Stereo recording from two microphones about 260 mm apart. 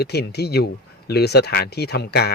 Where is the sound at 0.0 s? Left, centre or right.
Left.